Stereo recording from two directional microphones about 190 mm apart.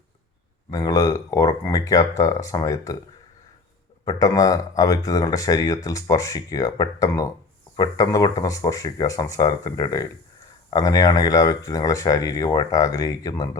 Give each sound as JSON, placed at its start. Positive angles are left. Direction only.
{"t": 0.7, "sound": "speech", "side_deg": 20}
{"t": 4.0, "sound": "speech", "side_deg": 20}